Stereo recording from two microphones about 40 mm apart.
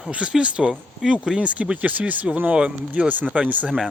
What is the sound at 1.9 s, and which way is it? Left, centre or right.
Speech, right.